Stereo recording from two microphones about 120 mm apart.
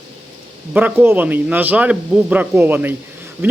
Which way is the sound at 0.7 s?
15° right (ahead or behind).